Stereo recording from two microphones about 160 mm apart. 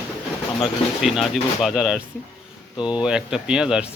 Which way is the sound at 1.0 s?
Centre (ahead or behind).